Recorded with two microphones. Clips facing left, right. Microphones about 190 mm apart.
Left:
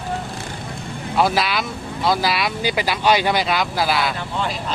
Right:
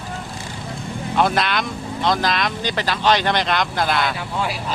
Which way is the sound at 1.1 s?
5° left (ahead or behind).